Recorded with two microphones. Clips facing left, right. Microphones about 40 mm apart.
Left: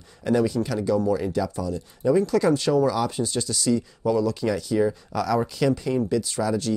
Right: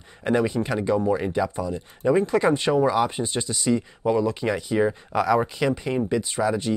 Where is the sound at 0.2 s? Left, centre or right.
Right.